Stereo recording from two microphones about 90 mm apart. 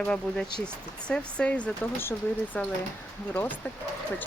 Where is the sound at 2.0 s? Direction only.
25° left (ahead or behind).